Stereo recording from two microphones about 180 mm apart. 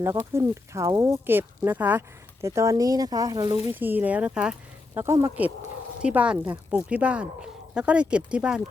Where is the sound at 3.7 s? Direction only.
10° right (ahead or behind).